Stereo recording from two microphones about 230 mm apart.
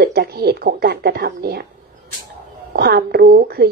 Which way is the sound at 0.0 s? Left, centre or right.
Right.